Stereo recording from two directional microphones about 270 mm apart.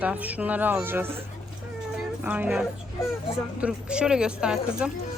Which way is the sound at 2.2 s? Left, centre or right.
Centre.